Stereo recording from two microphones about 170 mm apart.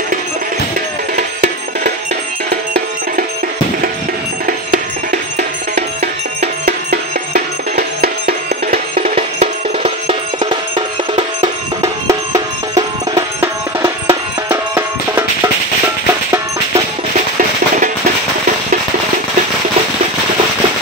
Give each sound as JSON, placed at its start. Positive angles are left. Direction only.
{"t": 6.6, "sound": "music", "side_deg": -65}
{"t": 9.0, "sound": "music", "side_deg": -35}
{"t": 11.8, "sound": "music", "side_deg": -20}